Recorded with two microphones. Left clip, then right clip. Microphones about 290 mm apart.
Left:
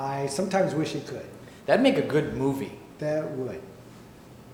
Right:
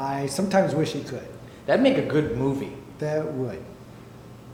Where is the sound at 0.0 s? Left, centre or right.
Left.